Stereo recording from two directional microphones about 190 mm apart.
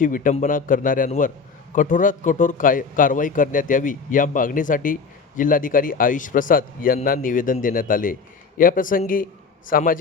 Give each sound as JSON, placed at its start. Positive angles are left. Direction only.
{"t": 0.0, "sound": "a man's voice", "side_deg": 45}